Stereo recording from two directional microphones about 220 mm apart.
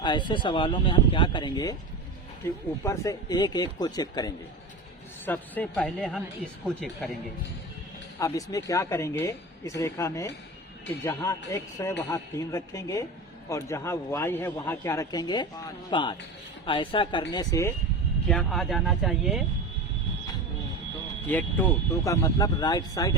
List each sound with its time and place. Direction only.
0.0 s a man's voice: 20° left (ahead or behind); by 7.1 s 5° left (ahead or behind)
8.2 s a man's voice: 15° left (ahead or behind)
18.3 s speech: centre (ahead or behind)
21.2 s a man's voice: 10° left (ahead or behind)